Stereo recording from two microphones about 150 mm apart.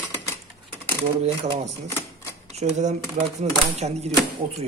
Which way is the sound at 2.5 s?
50° right (ahead or behind).